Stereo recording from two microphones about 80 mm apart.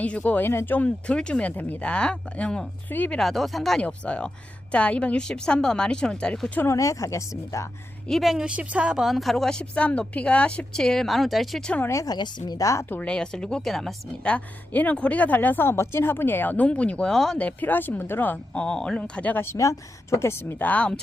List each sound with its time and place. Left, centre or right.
0.0 s a woman's voice: centre
3.2 s speech: centre
3.8 s a woman's voice: centre
6.7 s speech: left
8.2 s speech: centre
11.8 s speech: left
12.0 s a woman's voice: left
12.9 s a woman's voice: centre
14.3 s speech: centre
17.3 s speech: centre
19.5 s speech: left; by 21.0 s centre